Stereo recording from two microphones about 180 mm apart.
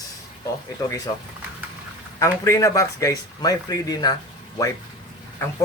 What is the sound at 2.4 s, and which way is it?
Speech, 15° left (ahead or behind).